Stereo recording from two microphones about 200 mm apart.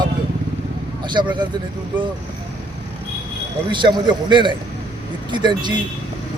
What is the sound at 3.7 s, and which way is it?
A man's voice, 25° right (ahead or behind).